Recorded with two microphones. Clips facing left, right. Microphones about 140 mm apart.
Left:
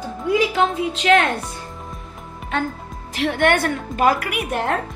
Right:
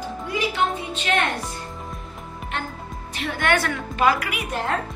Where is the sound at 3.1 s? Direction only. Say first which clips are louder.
Left 5 dB; 65° left (ahead or behind).